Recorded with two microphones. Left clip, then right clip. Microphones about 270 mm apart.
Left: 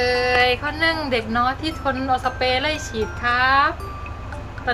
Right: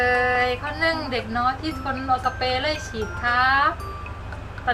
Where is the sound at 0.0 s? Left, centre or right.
Centre.